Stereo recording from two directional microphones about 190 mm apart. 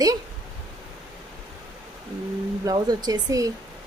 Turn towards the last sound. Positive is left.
turn(degrees=-20)  # may be behind; listen again after turning